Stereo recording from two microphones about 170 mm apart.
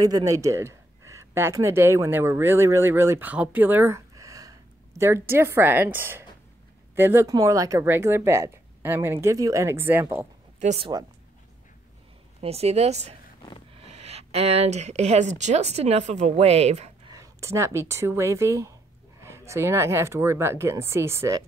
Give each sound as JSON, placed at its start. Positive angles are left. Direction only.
{"t": 0.0, "sound": "speech", "side_deg": -20}
{"t": 10.6, "sound": "speech", "side_deg": -40}
{"t": 12.4, "sound": "speech", "side_deg": -35}
{"t": 17.1, "sound": "speech", "side_deg": -20}